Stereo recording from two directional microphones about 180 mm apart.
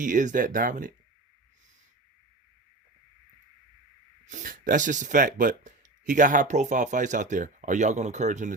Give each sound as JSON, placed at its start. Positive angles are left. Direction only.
{"t": 0.0, "sound": "speech", "side_deg": -45}
{"t": 4.3, "sound": "speech", "side_deg": -45}